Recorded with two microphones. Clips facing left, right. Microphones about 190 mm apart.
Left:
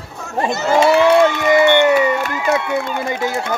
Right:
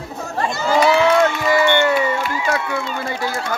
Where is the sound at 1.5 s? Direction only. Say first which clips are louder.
Left 5 dB; 20° left (ahead or behind).